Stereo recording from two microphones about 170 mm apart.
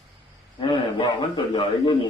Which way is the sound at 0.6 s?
30° left (ahead or behind).